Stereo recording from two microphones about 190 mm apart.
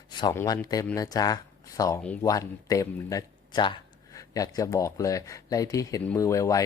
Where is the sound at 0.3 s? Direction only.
20° left (ahead or behind).